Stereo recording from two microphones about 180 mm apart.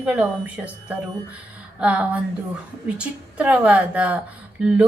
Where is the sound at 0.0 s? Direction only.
5° right (ahead or behind).